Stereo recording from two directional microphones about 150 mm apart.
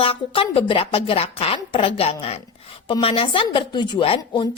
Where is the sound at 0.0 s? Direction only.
40° left (ahead or behind).